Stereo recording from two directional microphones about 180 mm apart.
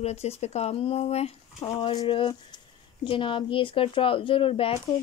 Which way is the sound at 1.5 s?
25° left (ahead or behind).